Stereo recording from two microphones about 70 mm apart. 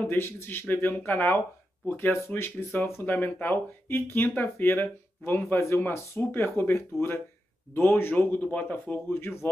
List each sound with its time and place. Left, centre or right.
0.0 s speech: left
5.4 s speech: left
9.1 s speech: left